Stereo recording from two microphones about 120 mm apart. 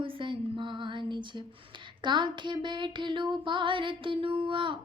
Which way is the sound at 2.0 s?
40° right (ahead or behind).